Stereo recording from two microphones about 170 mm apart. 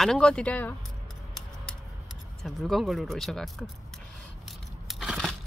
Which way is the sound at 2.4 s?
Centre (ahead or behind).